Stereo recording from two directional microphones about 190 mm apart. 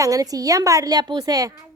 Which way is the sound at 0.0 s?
20° right (ahead or behind).